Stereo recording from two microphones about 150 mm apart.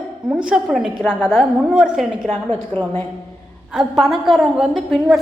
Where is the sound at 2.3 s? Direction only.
10° left (ahead or behind).